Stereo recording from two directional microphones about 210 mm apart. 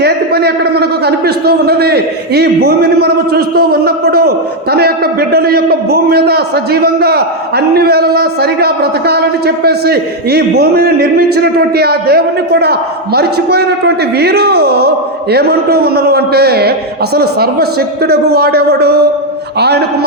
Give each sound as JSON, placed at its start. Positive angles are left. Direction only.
{"t": 0.0, "sound": "a man's voice", "side_deg": -50}